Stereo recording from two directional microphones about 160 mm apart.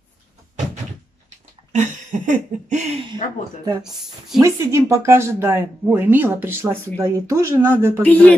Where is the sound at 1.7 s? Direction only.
50° right (ahead or behind).